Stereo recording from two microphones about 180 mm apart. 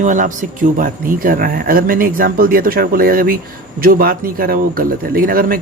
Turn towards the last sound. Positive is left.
turn(degrees=-55)  # may be behind; listen again after turning